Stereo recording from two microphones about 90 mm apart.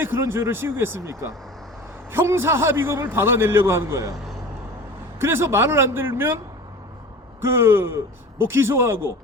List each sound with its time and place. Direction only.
0.0 s a man's voice: 25° right (ahead or behind)
5.2 s a man's voice: 30° right (ahead or behind)
7.4 s a man's voice: 30° right (ahead or behind)